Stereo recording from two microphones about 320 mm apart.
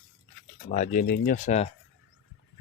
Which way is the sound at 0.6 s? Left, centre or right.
Left.